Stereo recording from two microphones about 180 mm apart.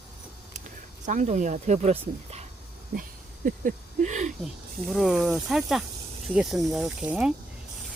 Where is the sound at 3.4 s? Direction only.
45° right (ahead or behind).